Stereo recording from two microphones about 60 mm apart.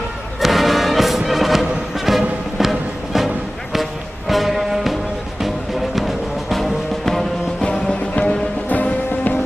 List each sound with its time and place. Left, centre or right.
0.3 s music: centre
6.0 s music: centre
7.6 s music: centre
8.7 s music: left